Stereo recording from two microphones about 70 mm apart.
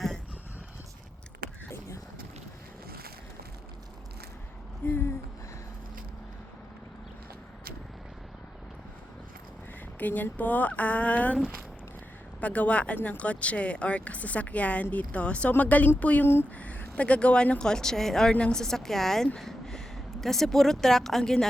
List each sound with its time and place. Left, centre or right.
4.9 s a sound: left
10.0 s speech: left
12.4 s speech: left
16.2 s speech: left
16.6 s speech: left